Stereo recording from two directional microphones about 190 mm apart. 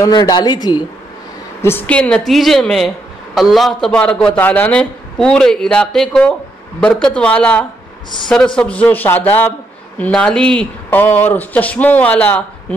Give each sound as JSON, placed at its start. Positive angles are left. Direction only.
{"t": 0.0, "sound": "a woman's voice", "side_deg": 20}
{"t": 1.6, "sound": "a man's voice", "side_deg": 10}